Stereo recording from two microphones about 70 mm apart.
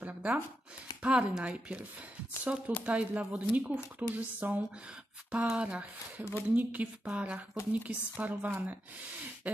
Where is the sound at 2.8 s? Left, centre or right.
Centre.